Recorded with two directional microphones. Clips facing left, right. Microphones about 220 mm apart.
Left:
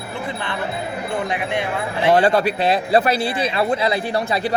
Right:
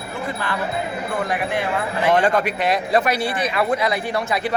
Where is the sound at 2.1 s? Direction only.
35° left (ahead or behind).